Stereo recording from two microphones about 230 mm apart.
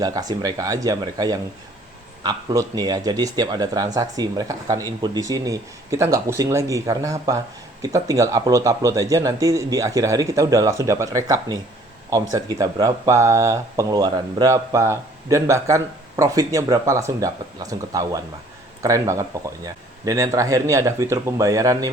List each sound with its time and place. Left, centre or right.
0.0 s speech: centre